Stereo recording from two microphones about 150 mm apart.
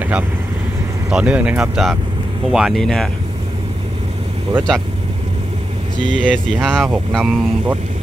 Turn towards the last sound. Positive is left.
turn(degrees=-5)  # may be behind; listen again after turning